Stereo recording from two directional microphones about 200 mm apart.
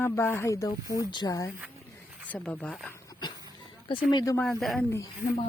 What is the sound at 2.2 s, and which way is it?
Speech, 5° left (ahead or behind).